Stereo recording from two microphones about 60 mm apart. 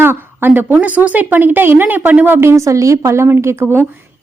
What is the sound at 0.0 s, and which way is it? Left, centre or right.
A woman's voice, right.